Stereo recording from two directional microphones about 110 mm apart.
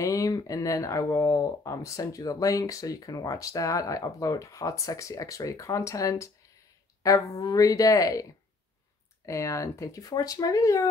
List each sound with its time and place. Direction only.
0.0 s speech: 30° left (ahead or behind)